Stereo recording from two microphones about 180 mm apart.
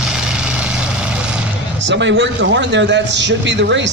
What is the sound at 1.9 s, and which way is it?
A man's voice, 85° right.